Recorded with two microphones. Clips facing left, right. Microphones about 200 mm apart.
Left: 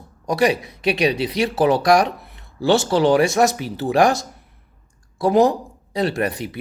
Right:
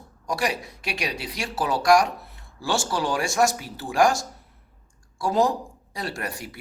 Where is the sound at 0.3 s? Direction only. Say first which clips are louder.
Left 9 dB; 20° left (ahead or behind).